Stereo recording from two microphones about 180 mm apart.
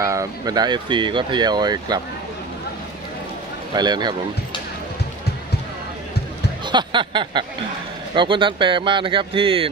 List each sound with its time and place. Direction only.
0.0 s speech: 20° right (ahead or behind)
3.7 s speech: 25° right (ahead or behind)
6.6 s speech: 25° right (ahead or behind)